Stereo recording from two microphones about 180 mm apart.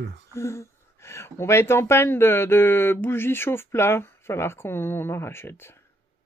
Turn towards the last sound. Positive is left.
turn(degrees=15)  # may be behind; listen again after turning